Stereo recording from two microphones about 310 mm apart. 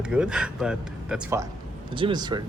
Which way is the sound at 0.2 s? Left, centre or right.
Centre.